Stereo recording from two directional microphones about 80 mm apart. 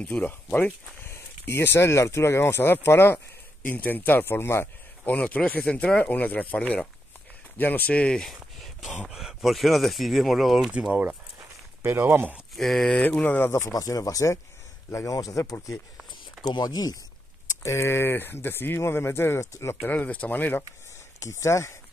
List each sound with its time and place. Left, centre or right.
0.0 s speech: left
5.1 s speech: centre
8.3 s a sound: centre
9.0 s speech: centre
10.7 s speech: centre
12.5 s speech: centre; by 13.5 s left
13.5 s speech: left
17.5 s speech: left
19.8 s speech: centre
21.2 s speech: left